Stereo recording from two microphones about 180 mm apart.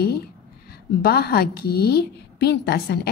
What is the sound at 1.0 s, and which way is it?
A woman's voice, 60° left (ahead or behind).